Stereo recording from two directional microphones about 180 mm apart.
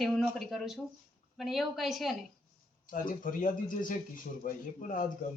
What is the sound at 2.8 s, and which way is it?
Speech, 50° left (ahead or behind).